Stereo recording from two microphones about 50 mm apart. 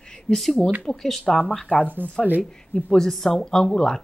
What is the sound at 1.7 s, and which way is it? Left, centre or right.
Speech, left.